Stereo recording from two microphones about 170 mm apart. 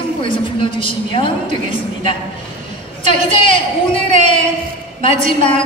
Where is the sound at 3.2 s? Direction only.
30° left (ahead or behind).